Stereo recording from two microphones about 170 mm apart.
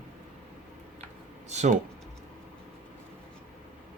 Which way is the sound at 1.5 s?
40° right (ahead or behind).